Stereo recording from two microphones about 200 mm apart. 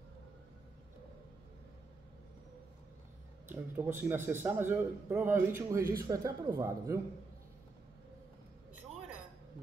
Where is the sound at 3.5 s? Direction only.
10° right (ahead or behind).